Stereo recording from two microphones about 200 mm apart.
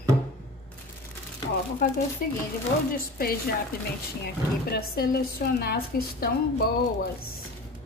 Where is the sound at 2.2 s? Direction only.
45° left (ahead or behind).